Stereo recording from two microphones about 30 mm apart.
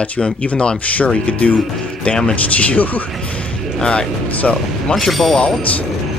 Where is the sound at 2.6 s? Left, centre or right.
Left.